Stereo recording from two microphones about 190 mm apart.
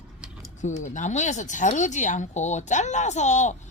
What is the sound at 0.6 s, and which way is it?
Speech, 40° left (ahead or behind).